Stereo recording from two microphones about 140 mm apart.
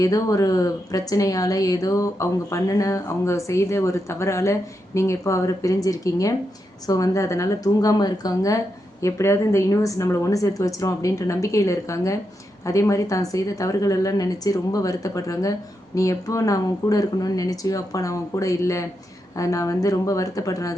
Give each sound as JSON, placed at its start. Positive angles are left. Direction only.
{"t": 0.0, "sound": "speech", "side_deg": 25}